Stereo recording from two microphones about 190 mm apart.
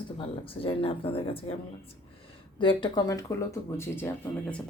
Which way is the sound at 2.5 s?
25° left (ahead or behind).